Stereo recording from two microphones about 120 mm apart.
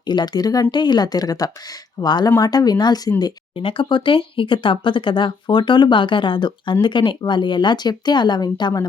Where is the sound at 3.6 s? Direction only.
45° left (ahead or behind).